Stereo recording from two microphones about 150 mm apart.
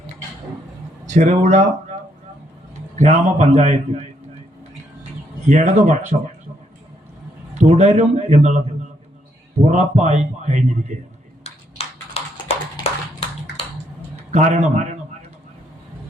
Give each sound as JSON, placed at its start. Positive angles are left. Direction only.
{"t": 1.0, "sound": "speech", "side_deg": -50}
{"t": 3.0, "sound": "speech", "side_deg": -50}
{"t": 5.5, "sound": "speech", "side_deg": -55}
{"t": 7.5, "sound": "a man's voice", "side_deg": -50}
{"t": 9.6, "sound": "speech", "side_deg": -45}
{"t": 11.8, "sound": "typing", "side_deg": 40}
{"t": 12.8, "sound": "a sound", "side_deg": 40}
{"t": 14.3, "sound": "speech", "side_deg": -55}